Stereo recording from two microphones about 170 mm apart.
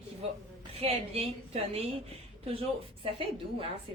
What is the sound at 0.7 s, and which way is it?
A woman's voice, 35° right (ahead or behind).